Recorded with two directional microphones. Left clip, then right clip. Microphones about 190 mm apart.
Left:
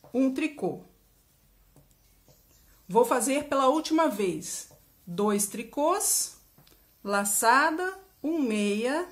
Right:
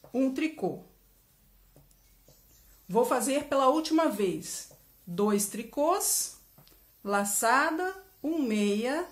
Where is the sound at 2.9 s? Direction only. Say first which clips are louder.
Left 3 dB; 15° left (ahead or behind).